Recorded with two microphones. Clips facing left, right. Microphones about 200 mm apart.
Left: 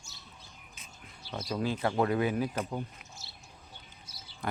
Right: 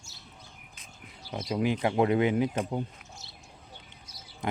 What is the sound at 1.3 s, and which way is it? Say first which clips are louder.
Speech: right 4 dB; 20° right (ahead or behind).